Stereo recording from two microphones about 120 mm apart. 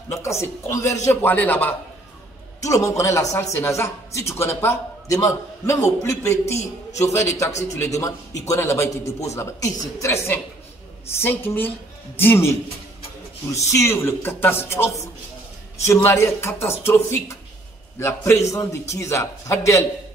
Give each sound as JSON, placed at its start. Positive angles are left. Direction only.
{"t": 0.1, "sound": "a man's voice", "side_deg": 25}
{"t": 1.2, "sound": "a man's voice", "side_deg": 15}
{"t": 2.6, "sound": "a man's voice", "side_deg": 25}